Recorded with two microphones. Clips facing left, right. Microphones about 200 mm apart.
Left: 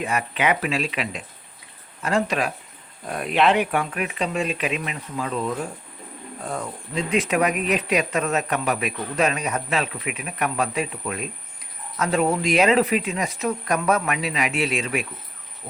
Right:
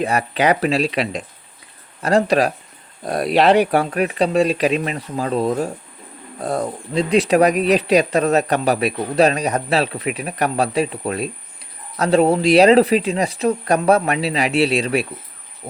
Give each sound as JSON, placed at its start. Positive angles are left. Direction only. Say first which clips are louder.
{"t": 0.0, "sound": "speech", "louder": "right 6 dB", "side_deg": -40}